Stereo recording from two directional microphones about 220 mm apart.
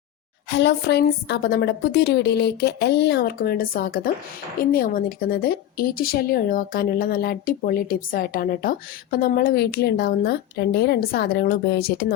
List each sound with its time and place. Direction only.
0.5 s a woman's voice: 50° left (ahead or behind)